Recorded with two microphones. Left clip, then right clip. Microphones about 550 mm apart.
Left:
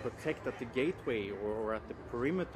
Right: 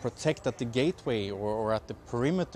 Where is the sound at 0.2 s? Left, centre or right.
Right.